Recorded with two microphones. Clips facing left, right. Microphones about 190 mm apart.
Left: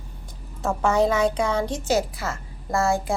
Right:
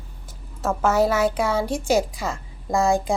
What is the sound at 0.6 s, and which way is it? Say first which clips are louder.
A woman's voice: right 1 dB; centre (ahead or behind).